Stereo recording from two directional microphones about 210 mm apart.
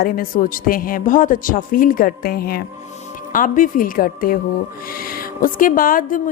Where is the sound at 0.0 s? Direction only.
40° left (ahead or behind).